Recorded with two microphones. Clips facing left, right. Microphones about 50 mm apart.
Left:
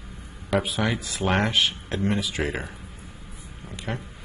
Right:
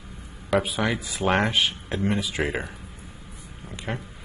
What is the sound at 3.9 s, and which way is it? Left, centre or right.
Speech, centre.